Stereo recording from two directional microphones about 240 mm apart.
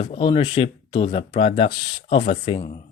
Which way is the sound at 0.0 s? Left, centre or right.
Left.